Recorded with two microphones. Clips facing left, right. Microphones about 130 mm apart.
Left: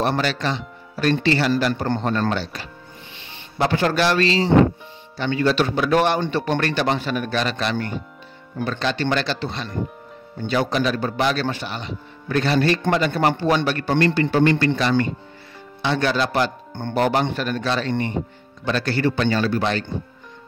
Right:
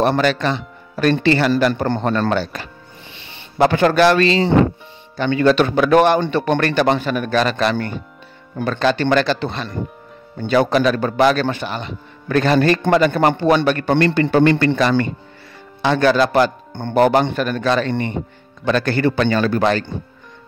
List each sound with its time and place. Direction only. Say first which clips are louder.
0.0 s a man's voice: right 5 dB; 55° right (ahead or behind); by 2.2 s 70° right (ahead or behind)
2.3 s a man's voice: right 6 dB; 50° right (ahead or behind); by 14.8 s 70° right (ahead or behind)
15.8 s speech: right 6 dB; 50° right (ahead or behind)